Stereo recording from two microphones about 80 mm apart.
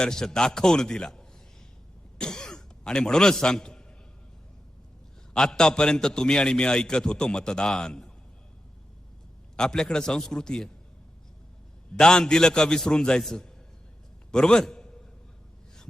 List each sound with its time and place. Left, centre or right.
0.0 s a man's voice: centre
2.1 s a sound: centre
5.3 s a man's voice: centre
9.6 s a man's voice: centre
11.9 s a man's voice: centre